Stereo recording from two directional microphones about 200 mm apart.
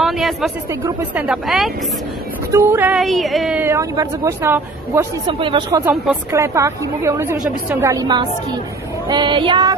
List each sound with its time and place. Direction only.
0.0 s a sound: centre (ahead or behind)
0.7 s a woman's voice: 15° right (ahead or behind)
1.2 s a woman's voice: centre (ahead or behind)
5.2 s child singing: 25° right (ahead or behind)
6.3 s a woman's voice: 15° right (ahead or behind)
9.0 s child singing: 20° right (ahead or behind)